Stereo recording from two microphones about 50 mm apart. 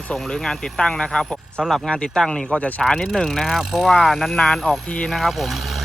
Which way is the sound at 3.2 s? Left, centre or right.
Centre.